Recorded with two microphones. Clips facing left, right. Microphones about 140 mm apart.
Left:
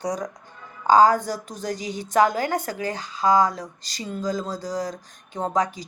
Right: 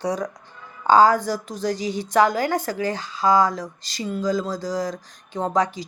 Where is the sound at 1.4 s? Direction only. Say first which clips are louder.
Right 6 dB; 40° left (ahead or behind).